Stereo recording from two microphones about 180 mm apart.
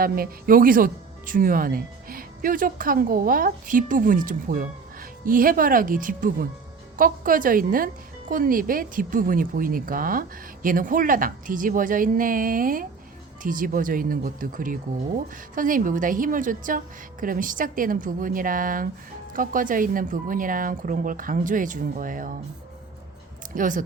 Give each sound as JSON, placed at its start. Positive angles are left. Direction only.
{"t": 0.0, "sound": "speech", "side_deg": -55}
{"t": 23.6, "sound": "speech", "side_deg": -45}